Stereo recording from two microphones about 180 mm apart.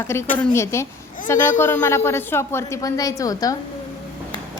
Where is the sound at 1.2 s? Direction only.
45° left (ahead or behind).